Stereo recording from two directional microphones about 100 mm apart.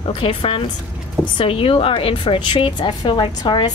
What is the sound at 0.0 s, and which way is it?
A woman's voice, 65° left (ahead or behind).